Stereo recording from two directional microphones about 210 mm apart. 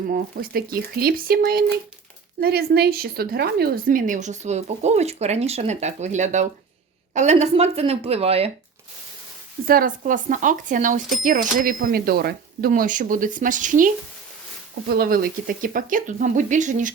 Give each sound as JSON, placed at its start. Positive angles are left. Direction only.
{"t": 0.1, "sound": "speech", "side_deg": -45}
{"t": 2.4, "sound": "a woman's voice", "side_deg": -45}
{"t": 9.6, "sound": "a woman's voice", "side_deg": -40}